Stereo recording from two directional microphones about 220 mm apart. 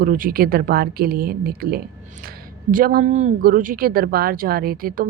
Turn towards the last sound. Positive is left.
turn(degrees=-40)  # may be behind; listen again after turning